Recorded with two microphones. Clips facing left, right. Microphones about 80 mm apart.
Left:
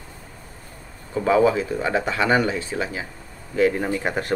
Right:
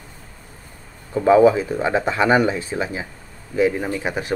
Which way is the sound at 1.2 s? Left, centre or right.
Right.